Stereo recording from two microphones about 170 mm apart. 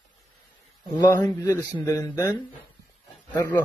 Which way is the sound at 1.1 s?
15° left (ahead or behind).